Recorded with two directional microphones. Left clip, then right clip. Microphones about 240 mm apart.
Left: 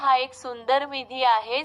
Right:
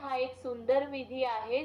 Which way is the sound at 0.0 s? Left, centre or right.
Left.